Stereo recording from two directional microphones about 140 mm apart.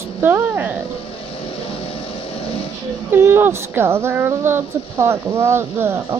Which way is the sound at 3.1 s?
15° right (ahead or behind).